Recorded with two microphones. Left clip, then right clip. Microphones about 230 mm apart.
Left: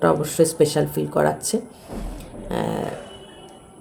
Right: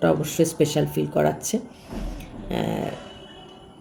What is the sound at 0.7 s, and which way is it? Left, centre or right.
Speech, centre.